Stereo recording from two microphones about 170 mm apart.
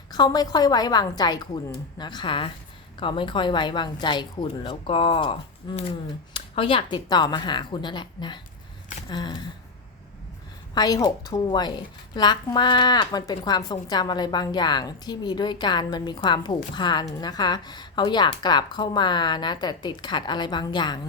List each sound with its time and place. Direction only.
0.1 s a woman's voice: 25° left (ahead or behind)
10.8 s a woman's voice: 25° left (ahead or behind)